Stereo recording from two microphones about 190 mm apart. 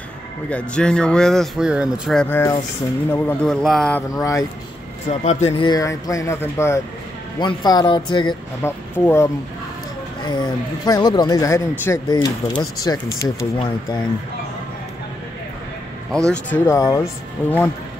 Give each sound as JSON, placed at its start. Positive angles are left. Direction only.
{"t": 0.5, "sound": "speech", "side_deg": 5}
{"t": 2.2, "sound": "speech", "side_deg": 10}
{"t": 4.1, "sound": "speech", "side_deg": 15}
{"t": 5.2, "sound": "speech", "side_deg": 35}
{"t": 5.7, "sound": "speech", "side_deg": 20}
{"t": 8.6, "sound": "speech", "side_deg": 10}
{"t": 16.3, "sound": "speech", "side_deg": 10}